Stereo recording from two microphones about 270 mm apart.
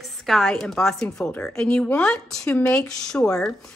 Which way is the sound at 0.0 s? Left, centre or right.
Centre.